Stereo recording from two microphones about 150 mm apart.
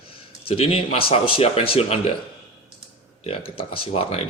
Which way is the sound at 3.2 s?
40° left (ahead or behind).